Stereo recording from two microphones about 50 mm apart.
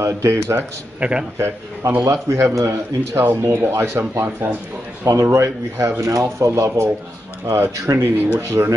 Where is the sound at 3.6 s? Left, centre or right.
Right.